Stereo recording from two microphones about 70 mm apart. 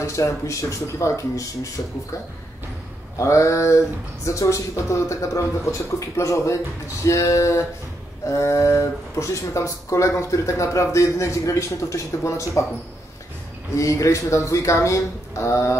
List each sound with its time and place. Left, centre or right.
0.0 s speech: left
3.2 s speech: left
13.7 s speech: left